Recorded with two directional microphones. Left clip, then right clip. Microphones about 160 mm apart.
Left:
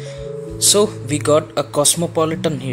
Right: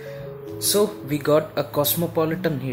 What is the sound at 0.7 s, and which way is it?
Speech, 25° left (ahead or behind).